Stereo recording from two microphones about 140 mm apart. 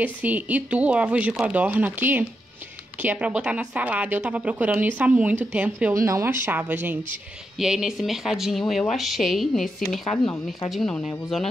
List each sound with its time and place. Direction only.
0.0 s a woman's voice: 10° right (ahead or behind)
5.9 s a woman's voice: 20° right (ahead or behind); by 11.1 s 5° left (ahead or behind)